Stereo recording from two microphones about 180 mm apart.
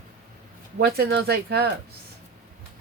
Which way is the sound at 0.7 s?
60° right (ahead or behind).